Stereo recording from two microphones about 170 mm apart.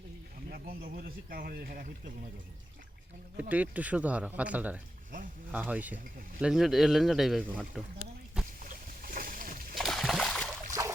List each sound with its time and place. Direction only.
0.5 s speech: 60° right (ahead or behind)
3.5 s speech: 10° right (ahead or behind)
8.5 s boat: 55° right (ahead or behind)
9.7 s splash: centre (ahead or behind)
10.8 s trickle: 20° right (ahead or behind)